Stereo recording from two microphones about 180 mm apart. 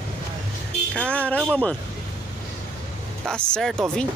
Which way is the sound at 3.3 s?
5° left (ahead or behind).